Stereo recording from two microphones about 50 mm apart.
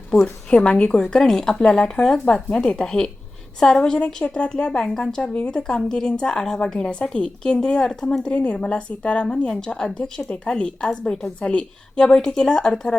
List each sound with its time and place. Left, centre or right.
0.1 s a woman's voice: centre